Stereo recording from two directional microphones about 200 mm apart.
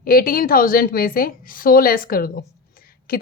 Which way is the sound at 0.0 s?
45° left (ahead or behind).